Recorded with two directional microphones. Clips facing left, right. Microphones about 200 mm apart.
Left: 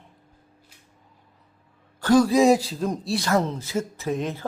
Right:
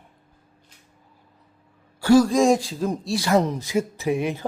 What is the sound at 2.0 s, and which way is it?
Speech, 10° right (ahead or behind).